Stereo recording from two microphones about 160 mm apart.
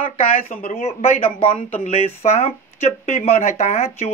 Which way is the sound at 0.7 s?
40° left (ahead or behind).